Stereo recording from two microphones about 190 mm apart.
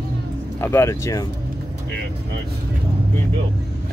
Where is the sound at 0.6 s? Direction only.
15° left (ahead or behind).